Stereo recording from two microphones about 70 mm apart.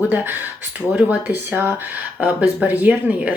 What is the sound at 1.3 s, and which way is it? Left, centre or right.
Speech, right.